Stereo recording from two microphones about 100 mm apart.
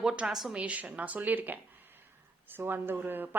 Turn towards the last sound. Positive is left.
turn(degrees=-20)  # may be behind; listen again after turning